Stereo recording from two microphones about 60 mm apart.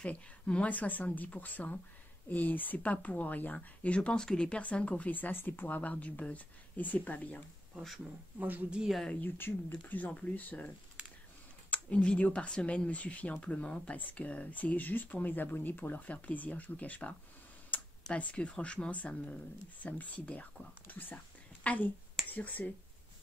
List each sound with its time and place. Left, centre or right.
0.0 s speech: centre
7.7 s speech: centre
8.4 s a woman's voice: right
8.6 s speech: centre
9.2 s speech: left
11.7 s speech: centre
17.7 s computer keyboard: left
18.1 s speech: left